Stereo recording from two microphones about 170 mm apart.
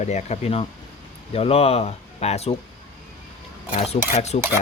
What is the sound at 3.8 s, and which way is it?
Speech, 40° left (ahead or behind).